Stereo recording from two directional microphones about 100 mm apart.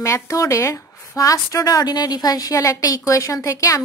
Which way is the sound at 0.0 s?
30° left (ahead or behind).